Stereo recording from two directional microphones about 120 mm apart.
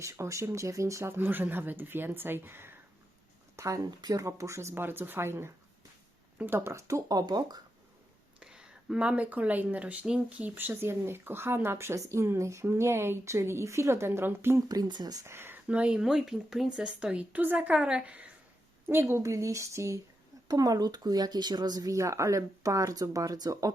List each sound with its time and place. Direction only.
0.0 s speech: 25° right (ahead or behind)
8.4 s speech: 5° right (ahead or behind)
14.7 s speech: 35° right (ahead or behind)